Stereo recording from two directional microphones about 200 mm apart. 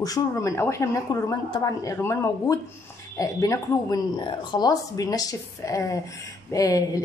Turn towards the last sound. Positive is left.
turn(degrees=15)  # may be behind; listen again after turning